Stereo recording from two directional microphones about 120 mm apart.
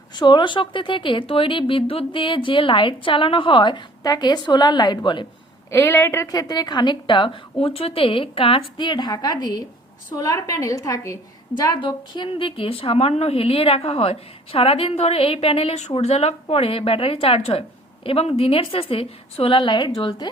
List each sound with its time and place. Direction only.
0.1 s a woman's voice: 40° left (ahead or behind)
5.7 s a woman's voice: 20° left (ahead or behind); by 20.2 s 40° left (ahead or behind)